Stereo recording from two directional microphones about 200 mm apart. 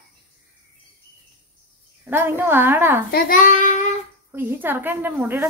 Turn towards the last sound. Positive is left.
turn(degrees=-10)  # may be behind; listen again after turning